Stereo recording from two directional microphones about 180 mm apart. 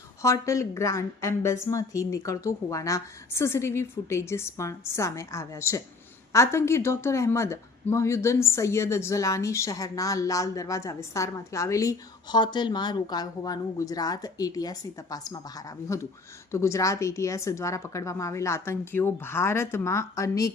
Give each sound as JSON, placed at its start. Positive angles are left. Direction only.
{"t": 0.2, "sound": "speech", "side_deg": 15}